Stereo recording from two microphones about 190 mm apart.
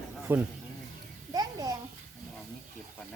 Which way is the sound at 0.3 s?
10° right (ahead or behind).